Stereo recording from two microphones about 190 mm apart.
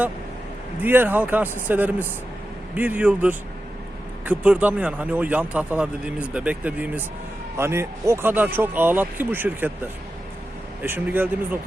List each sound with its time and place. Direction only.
0.8 s speech: 10° right (ahead or behind)